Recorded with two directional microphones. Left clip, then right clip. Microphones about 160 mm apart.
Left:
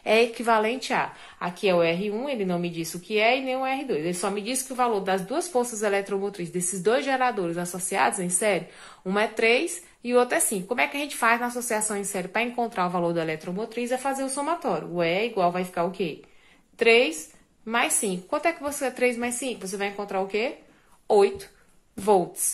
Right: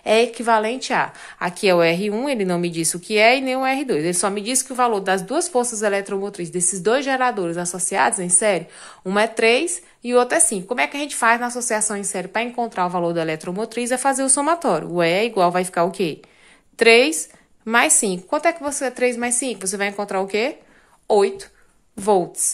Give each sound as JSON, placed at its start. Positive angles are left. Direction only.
{"t": 0.0, "sound": "a woman's voice", "side_deg": -30}
{"t": 21.1, "sound": "a woman's voice", "side_deg": -35}